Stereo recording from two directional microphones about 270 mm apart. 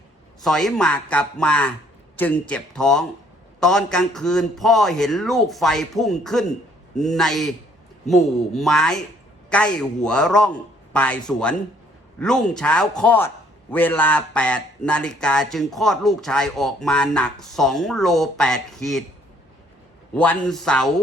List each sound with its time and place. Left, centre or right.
0.4 s a man's voice: centre
20.1 s a man's voice: centre